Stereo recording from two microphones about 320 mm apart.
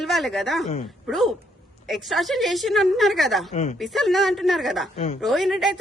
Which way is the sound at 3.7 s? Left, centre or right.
Centre.